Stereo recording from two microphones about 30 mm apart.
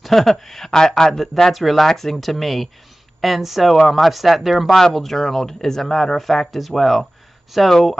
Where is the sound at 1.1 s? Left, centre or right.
Centre.